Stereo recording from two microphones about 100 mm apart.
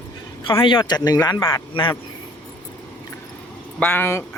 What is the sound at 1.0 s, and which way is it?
Speech, 40° left (ahead or behind).